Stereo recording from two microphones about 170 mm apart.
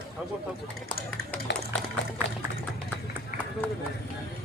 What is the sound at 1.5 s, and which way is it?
Music, 90° left.